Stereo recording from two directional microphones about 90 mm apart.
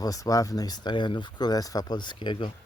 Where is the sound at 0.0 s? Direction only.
40° left (ahead or behind); by 2.5 s 60° left (ahead or behind).